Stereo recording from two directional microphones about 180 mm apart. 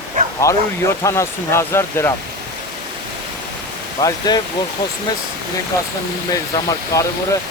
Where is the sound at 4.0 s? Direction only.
20° left (ahead or behind).